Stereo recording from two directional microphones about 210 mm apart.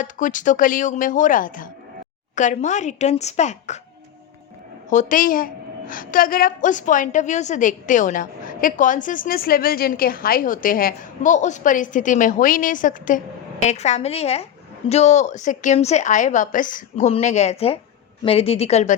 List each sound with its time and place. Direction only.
0.0 s a woman's voice: 40° left (ahead or behind)
4.9 s a woman's voice: 35° left (ahead or behind)